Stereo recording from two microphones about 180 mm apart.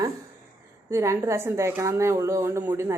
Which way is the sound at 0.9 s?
15° right (ahead or behind).